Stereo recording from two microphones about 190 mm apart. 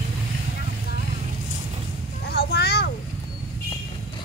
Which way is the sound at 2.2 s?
60° left (ahead or behind).